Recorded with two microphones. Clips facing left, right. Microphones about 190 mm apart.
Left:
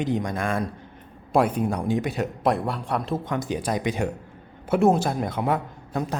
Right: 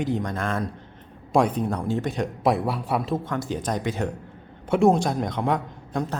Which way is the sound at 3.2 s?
15° left (ahead or behind).